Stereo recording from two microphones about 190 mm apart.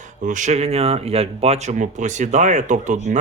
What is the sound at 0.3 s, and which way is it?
Speech, 40° right (ahead or behind).